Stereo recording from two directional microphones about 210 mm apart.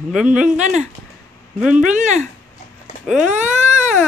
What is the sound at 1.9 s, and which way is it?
Speech, 35° right (ahead or behind).